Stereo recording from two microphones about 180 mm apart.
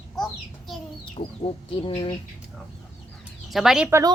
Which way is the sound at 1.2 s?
40° left (ahead or behind).